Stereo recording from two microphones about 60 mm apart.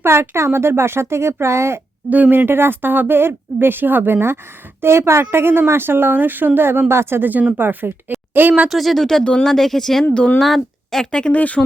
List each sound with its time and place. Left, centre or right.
0.0 s speech: right
2.0 s a woman's voice: right
7.5 s a woman's voice: right
8.7 s speech: centre
9.2 s speech: centre
9.5 s speech: centre; by 11.6 s left